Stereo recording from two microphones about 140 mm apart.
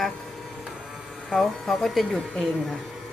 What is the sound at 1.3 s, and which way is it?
Speech, centre (ahead or behind).